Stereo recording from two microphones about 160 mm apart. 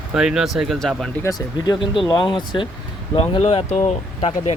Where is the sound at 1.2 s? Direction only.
25° left (ahead or behind).